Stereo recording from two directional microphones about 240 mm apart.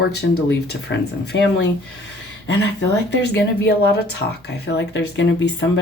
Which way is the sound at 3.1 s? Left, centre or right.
Left.